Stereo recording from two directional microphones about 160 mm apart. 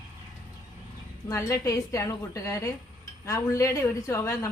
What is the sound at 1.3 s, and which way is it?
A woman's voice, 20° left (ahead or behind).